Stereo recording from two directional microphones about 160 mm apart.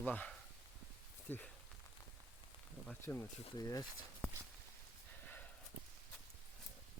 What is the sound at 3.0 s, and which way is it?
Speech, 15° left (ahead or behind).